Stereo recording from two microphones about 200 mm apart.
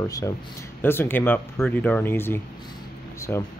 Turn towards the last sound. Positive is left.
turn(degrees=10)  # may be behind; listen again after turning